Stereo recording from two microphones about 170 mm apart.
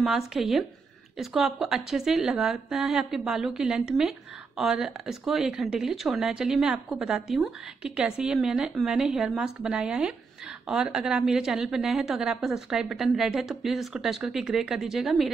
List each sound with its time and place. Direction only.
0.3 s speech: centre (ahead or behind)